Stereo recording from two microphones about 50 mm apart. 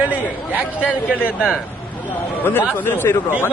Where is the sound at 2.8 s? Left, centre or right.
Left.